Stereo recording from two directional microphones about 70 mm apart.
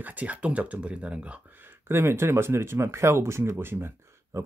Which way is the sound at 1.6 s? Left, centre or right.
Right.